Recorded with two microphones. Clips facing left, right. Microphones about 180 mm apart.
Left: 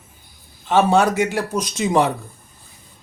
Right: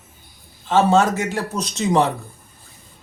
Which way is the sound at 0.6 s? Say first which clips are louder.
Even; 15° left (ahead or behind).